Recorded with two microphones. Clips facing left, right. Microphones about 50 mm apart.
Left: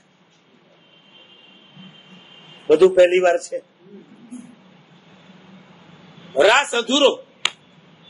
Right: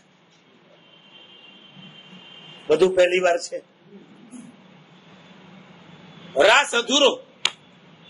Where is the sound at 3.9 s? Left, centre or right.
Right.